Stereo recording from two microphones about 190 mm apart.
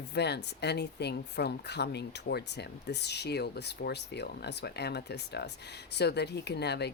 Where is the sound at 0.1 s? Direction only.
60° left (ahead or behind).